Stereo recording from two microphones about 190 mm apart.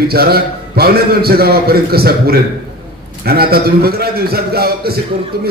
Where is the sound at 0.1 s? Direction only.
55° right (ahead or behind).